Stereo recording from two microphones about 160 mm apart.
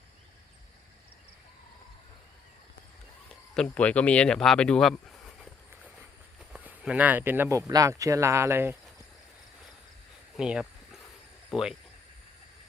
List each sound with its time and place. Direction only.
3.5 s speech: 5° left (ahead or behind)
6.5 s speech: 5° right (ahead or behind)
10.3 s a sound: 5° right (ahead or behind)
11.5 s speech: 5° right (ahead or behind)